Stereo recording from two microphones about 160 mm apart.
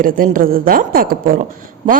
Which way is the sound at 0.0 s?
60° right (ahead or behind).